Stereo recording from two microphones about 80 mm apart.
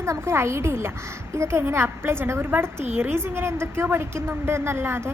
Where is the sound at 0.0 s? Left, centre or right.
Right.